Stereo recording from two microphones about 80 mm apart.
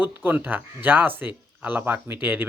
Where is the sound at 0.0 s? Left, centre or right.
Right.